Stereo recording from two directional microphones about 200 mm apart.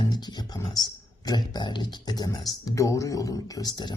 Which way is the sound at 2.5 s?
15° left (ahead or behind).